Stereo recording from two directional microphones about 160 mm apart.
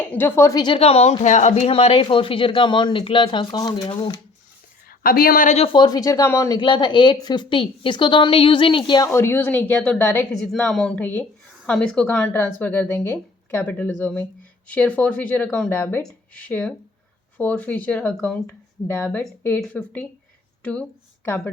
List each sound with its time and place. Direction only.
0.0 s speech: 10° left (ahead or behind)
0.8 s speech: 40° left (ahead or behind)
4.9 s speech: 65° left (ahead or behind)
5.5 s a woman's voice: 35° left (ahead or behind)
9.0 s speech: 15° left (ahead or behind)
10.5 s speech: centre (ahead or behind)
21.2 s speech: 10° left (ahead or behind)